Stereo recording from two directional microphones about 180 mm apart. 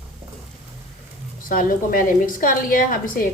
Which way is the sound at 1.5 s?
50° left (ahead or behind).